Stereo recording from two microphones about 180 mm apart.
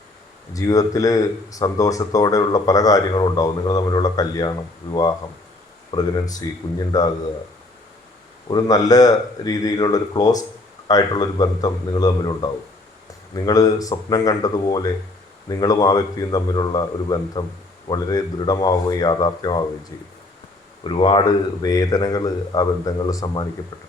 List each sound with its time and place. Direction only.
0.5 s speech: 20° left (ahead or behind)
8.4 s speech: 20° left (ahead or behind)
20.8 s speech: 30° left (ahead or behind)